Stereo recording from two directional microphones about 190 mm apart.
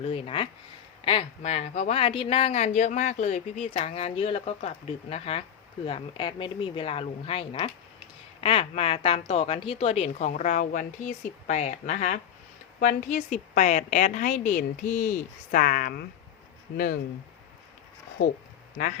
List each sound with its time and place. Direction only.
0.0 s a woman's voice: 30° left (ahead or behind); by 17.0 s 50° left (ahead or behind)